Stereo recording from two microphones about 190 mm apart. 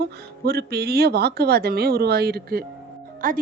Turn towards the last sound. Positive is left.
turn(degrees=-45)  # may be behind; listen again after turning